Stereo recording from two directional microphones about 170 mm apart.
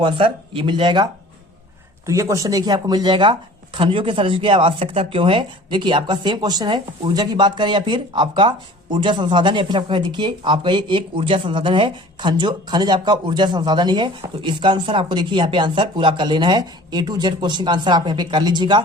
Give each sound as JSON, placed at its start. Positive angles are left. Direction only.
{"t": 0.0, "sound": "speech", "side_deg": -30}
{"t": 2.0, "sound": "speech", "side_deg": -20}